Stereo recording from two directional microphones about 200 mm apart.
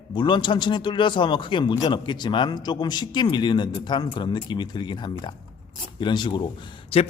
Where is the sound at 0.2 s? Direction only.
25° left (ahead or behind).